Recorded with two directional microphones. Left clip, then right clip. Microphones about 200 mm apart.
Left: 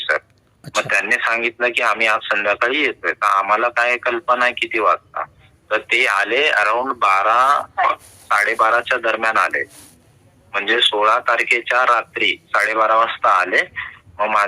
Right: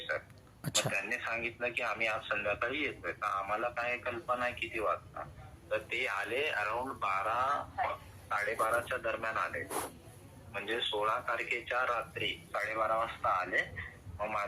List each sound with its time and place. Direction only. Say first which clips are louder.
0.8 s speech: left 17 dB; 45° left (ahead or behind)